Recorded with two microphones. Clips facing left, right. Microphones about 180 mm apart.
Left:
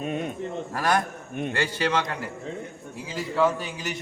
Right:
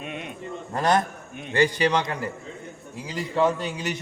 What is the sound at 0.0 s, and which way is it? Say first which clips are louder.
Speech: left 6 dB; 40° left (ahead or behind).